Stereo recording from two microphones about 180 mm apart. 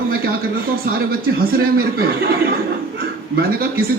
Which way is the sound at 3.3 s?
55° right (ahead or behind).